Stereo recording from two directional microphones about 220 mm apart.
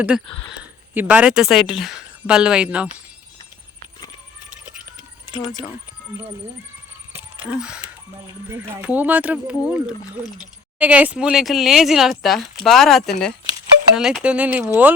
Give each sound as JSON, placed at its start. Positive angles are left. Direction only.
{"t": 0.1, "sound": "speech", "side_deg": -5}
{"t": 5.4, "sound": "speech", "side_deg": 20}
{"t": 7.5, "sound": "speech", "side_deg": -5}
{"t": 8.8, "sound": "speech", "side_deg": -5}